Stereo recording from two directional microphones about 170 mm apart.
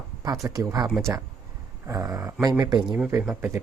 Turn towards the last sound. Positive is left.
turn(degrees=-10)  # may be behind; listen again after turning